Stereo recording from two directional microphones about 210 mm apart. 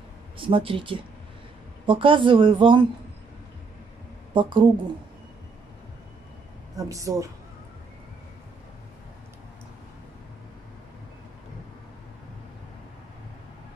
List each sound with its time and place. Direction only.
0.4 s speech: 25° right (ahead or behind)
4.3 s a woman's voice: 25° right (ahead or behind)
6.8 s a woman's voice: 15° right (ahead or behind)